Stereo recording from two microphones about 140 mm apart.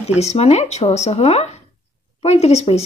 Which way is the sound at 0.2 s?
50° left (ahead or behind).